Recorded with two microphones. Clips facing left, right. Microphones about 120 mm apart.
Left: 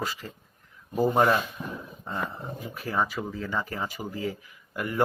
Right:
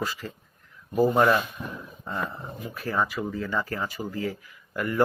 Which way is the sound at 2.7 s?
15° left (ahead or behind).